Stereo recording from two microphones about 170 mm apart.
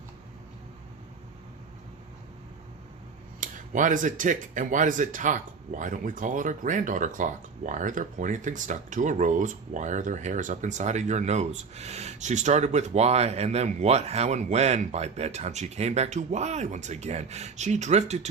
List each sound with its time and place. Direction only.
3.4 s speech: 50° right (ahead or behind)